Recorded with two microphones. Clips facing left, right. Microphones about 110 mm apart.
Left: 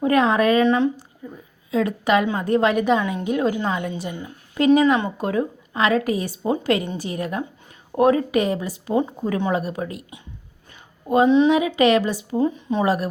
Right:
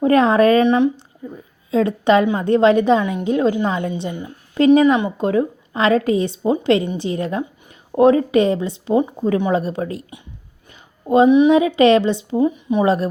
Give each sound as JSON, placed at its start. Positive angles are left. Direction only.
{"t": 0.0, "sound": "speech", "side_deg": -35}
{"t": 0.6, "sound": "a woman's voice", "side_deg": -20}
{"t": 3.0, "sound": "a woman's voice", "side_deg": -20}
{"t": 11.3, "sound": "speech", "side_deg": -15}
{"t": 11.8, "sound": "a woman's voice", "side_deg": -30}
{"t": 12.5, "sound": "speech", "side_deg": -15}
{"t": 12.8, "sound": "a woman's voice", "side_deg": -25}